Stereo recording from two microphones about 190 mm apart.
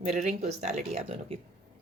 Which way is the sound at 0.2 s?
40° right (ahead or behind).